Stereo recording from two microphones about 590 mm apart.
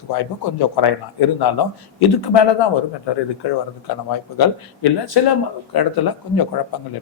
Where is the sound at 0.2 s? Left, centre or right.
Left.